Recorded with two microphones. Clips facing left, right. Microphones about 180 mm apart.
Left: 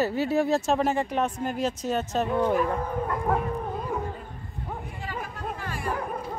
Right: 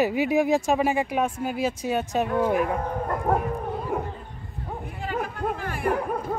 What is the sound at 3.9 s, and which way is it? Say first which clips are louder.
Dog: right 3 dB; 60° right (ahead or behind).